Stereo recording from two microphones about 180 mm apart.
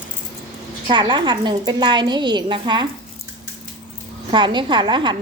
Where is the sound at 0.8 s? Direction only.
25° right (ahead or behind).